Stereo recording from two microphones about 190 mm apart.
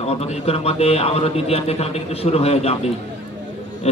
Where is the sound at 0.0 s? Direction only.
35° left (ahead or behind).